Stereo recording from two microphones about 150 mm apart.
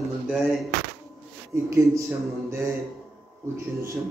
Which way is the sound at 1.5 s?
20° right (ahead or behind).